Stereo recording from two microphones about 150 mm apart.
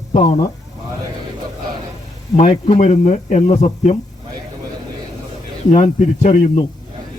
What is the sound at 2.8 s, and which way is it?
Speech, 50° left (ahead or behind).